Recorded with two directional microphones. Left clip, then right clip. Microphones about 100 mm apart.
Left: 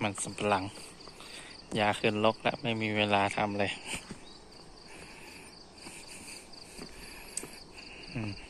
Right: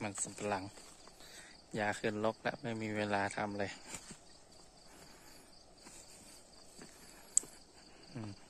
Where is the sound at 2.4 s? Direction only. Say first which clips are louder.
Left 8 dB; 55° right (ahead or behind).